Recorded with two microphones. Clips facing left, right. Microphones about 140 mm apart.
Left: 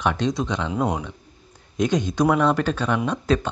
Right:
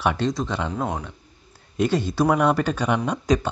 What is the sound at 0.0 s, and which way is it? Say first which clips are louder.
Speech: even; 5° right (ahead or behind).